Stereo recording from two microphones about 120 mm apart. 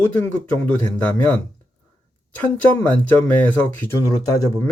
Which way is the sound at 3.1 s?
15° left (ahead or behind).